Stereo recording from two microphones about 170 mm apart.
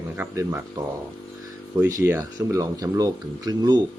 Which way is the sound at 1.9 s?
15° right (ahead or behind).